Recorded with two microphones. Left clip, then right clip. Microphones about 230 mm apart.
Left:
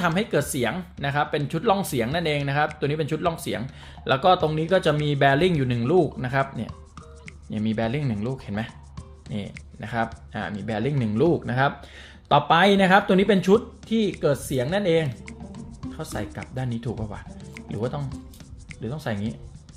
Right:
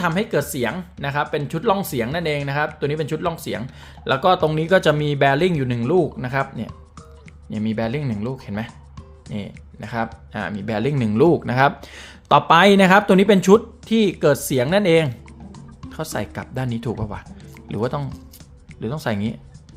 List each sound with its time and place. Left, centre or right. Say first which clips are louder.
0.0 s speech: right 2 dB; centre